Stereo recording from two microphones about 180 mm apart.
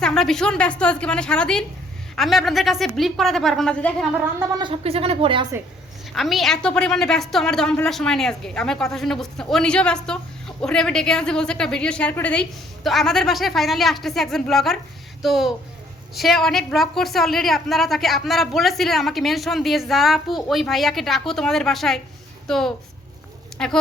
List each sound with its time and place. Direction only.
0.0 s a woman's voice: 5° left (ahead or behind)
4.4 s speech: 20° right (ahead or behind)
4.7 s speech: 35° right (ahead or behind)
6.1 s a woman's voice: centre (ahead or behind)